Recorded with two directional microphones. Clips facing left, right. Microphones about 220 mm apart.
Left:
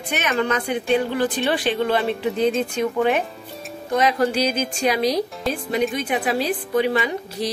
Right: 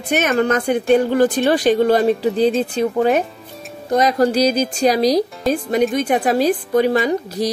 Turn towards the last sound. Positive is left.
turn(degrees=-40)  # may be behind; listen again after turning